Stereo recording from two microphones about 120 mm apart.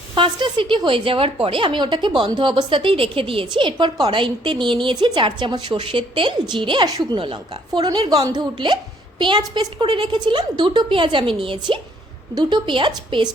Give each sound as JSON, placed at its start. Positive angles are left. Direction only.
{"t": 0.1, "sound": "a woman's voice", "side_deg": -45}